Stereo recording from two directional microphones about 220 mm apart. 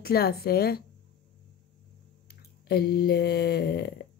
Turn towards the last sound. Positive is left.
turn(degrees=50)  # may be behind; listen again after turning